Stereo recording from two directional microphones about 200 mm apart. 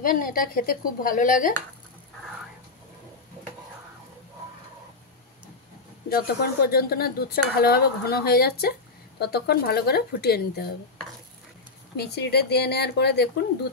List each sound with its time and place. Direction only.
0.0 s speech: 45° left (ahead or behind)
6.0 s speech: 50° left (ahead or behind)
12.0 s speech: 55° left (ahead or behind)